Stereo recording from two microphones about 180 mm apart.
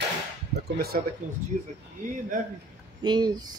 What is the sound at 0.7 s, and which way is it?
Speech, 60° right (ahead or behind).